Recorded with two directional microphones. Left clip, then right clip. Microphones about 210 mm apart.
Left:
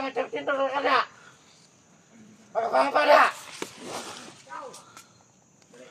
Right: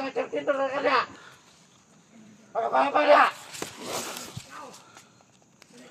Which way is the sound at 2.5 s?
10° right (ahead or behind).